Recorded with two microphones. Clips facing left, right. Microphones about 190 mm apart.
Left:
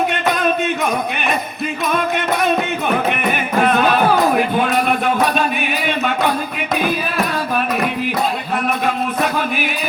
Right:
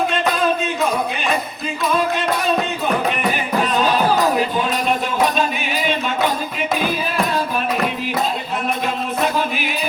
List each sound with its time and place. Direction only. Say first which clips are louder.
0.1 s music: left 1 dB; 65° left (ahead or behind)
8.8 s music: left 2 dB; 55° left (ahead or behind)